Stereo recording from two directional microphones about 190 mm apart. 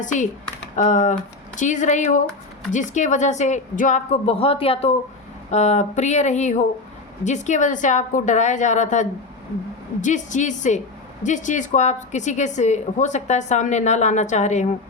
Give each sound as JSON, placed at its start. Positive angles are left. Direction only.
{"t": 0.0, "sound": "a woman's voice", "side_deg": 40}